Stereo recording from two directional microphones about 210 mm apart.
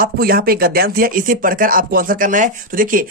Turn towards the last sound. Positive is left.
turn(degrees=-40)  # may be behind; listen again after turning